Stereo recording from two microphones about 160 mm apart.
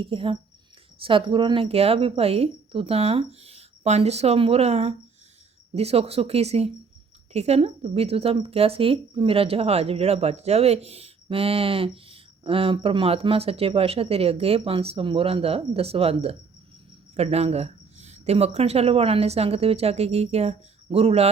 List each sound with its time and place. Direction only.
0.0 s a woman's voice: 35° right (ahead or behind)